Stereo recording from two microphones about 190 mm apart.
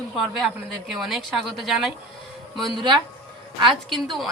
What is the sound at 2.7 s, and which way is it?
Speech, 25° right (ahead or behind).